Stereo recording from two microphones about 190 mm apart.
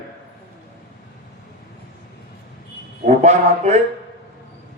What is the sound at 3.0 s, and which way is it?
Speech, 35° right (ahead or behind).